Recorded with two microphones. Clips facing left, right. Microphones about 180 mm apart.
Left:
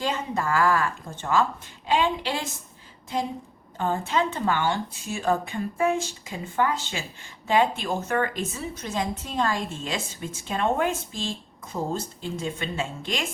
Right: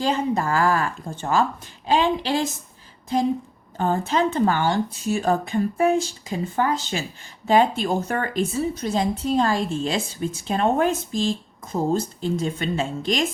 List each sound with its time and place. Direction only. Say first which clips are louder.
0.0 s speech: right 5 dB; 35° right (ahead or behind)
3.8 s speech: right 4 dB; 40° right (ahead or behind)